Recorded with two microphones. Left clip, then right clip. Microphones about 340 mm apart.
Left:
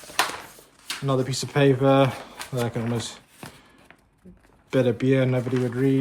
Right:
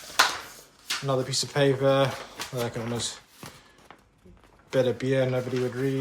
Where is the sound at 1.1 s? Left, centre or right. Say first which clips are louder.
Left 2 dB; left.